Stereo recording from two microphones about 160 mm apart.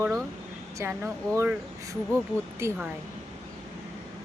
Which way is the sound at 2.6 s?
15° right (ahead or behind).